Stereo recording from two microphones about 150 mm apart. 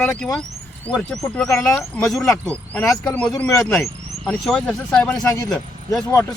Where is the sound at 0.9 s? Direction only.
Centre (ahead or behind).